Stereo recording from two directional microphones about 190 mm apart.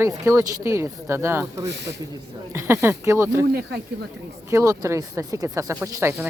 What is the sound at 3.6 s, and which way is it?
Speech, 60° right (ahead or behind).